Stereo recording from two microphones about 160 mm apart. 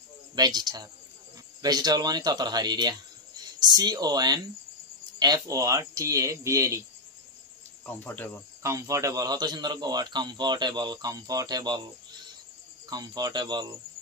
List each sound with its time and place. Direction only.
0.4 s speech: 25° right (ahead or behind)
7.8 s speech: 10° left (ahead or behind)
8.6 s speech: 20° right (ahead or behind)
12.9 s speech: 25° right (ahead or behind)